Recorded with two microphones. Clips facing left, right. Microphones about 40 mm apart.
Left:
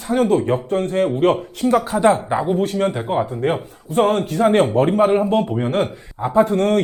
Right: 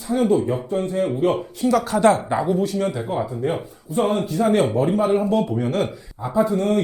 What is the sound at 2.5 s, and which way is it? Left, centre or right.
Speech, left.